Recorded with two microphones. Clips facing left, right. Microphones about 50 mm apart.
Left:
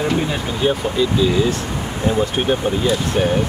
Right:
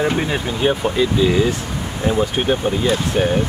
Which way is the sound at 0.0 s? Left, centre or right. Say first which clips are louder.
Right 1 dB; right.